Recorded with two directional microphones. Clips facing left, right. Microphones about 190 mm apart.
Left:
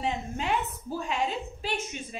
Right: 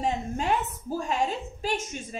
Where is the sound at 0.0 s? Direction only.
45° right (ahead or behind).